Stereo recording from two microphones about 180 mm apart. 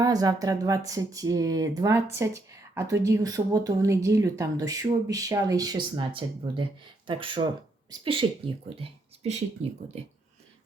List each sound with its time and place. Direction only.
0.0 s speech: 20° right (ahead or behind)